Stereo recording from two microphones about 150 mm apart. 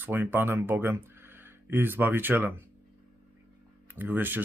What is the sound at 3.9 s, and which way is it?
Speech, 15° right (ahead or behind).